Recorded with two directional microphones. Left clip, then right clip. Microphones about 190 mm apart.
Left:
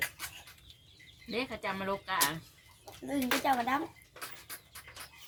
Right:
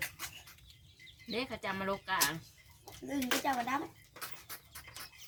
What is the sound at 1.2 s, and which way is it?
Speech, 10° right (ahead or behind).